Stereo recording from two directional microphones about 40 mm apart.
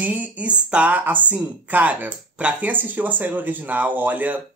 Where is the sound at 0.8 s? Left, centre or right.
Right.